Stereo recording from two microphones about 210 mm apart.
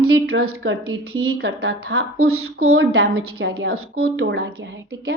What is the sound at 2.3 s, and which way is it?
Speech, 90° right.